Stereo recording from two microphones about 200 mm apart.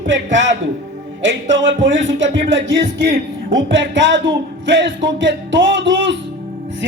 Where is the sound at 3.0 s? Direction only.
50° right (ahead or behind).